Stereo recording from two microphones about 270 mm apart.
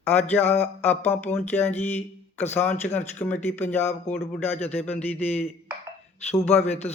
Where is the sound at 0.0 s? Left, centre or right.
Centre.